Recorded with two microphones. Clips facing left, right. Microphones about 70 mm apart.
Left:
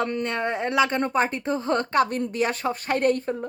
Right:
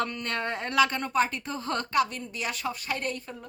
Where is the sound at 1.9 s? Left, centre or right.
Left.